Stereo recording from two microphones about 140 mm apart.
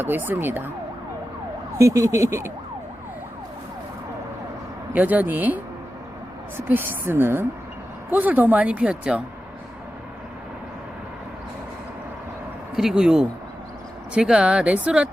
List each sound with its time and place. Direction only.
0.0 s speech: 15° right (ahead or behind)
1.8 s speech: 20° right (ahead or behind)
4.9 s speech: 10° right (ahead or behind)
6.7 s speech: 15° right (ahead or behind)
12.7 s speech: 5° right (ahead or behind)